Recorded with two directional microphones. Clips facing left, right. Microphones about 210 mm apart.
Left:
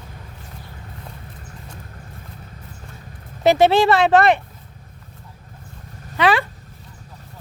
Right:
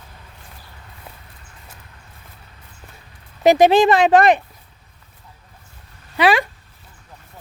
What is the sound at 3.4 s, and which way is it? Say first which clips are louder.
Speech: right 2 dB; 15° right (ahead or behind).